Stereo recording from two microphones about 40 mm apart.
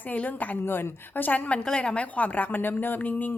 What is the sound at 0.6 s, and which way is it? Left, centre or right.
Speech, left.